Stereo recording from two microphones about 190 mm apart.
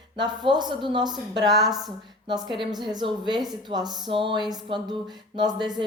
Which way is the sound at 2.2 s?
25° right (ahead or behind).